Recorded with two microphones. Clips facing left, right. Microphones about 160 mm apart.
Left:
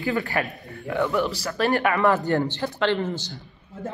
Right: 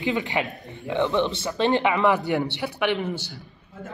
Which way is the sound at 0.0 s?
20° right (ahead or behind).